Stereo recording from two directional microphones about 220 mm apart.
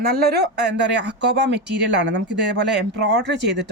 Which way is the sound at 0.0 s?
45° right (ahead or behind).